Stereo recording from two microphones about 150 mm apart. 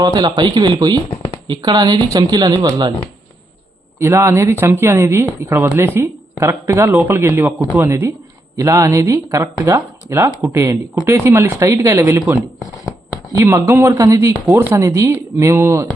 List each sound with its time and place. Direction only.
0.0 s speech: 25° right (ahead or behind)
1.1 s shuffling cards: 40° left (ahead or behind)
1.5 s speech: 30° right (ahead or behind)
4.0 s a woman's voice: 15° right (ahead or behind)
13.3 s a woman's voice: 15° right (ahead or behind)